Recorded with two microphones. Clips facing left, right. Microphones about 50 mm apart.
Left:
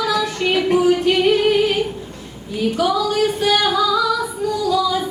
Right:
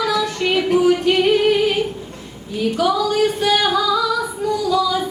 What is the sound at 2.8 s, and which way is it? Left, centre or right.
Female singing, centre.